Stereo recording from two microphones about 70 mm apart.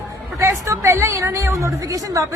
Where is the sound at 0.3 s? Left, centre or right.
Right.